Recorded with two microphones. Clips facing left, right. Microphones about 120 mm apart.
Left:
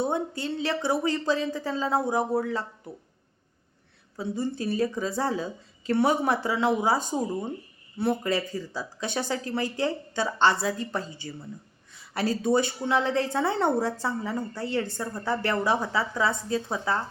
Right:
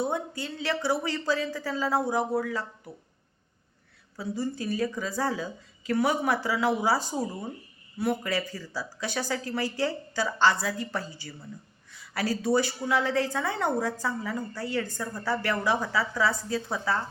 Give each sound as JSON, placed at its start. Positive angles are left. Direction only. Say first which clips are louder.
{"t": 0.0, "sound": "speech", "louder": "left 2 dB", "side_deg": 25}
{"t": 4.2, "sound": "speech", "louder": "left 2 dB", "side_deg": 25}